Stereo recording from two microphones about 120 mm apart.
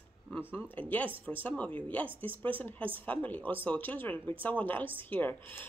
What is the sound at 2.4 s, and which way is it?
Speech, 15° left (ahead or behind).